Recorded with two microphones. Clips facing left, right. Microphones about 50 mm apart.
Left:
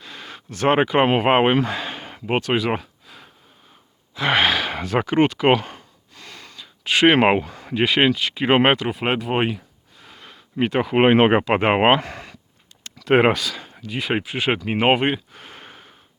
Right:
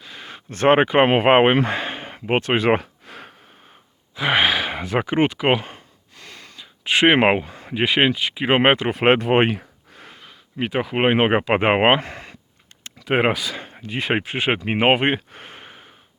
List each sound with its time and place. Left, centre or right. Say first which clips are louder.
0.0 s a sound: left 1 dB; centre
0.5 s speech: right 2 dB; right
3.1 s a sound: right 6 dB; right
4.1 s sigh: even; centre
7.5 s speech: left 1 dB; centre
8.9 s speech: right 6 dB; right
10.2 s speech: left 4 dB; centre
11.4 s speech: even; centre
13.1 s speech: left 3 dB; centre
13.4 s speech: even; right
15.6 s snort: even; centre